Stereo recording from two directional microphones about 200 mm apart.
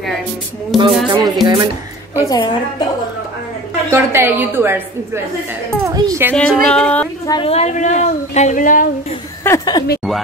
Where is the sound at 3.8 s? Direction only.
10° right (ahead or behind).